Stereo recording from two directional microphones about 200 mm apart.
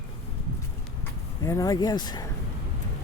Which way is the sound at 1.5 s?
15° left (ahead or behind).